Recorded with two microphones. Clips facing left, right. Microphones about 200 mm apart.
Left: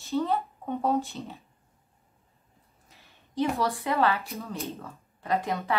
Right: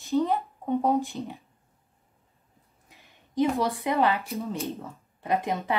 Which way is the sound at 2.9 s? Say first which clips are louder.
Right 4 dB; 15° right (ahead or behind).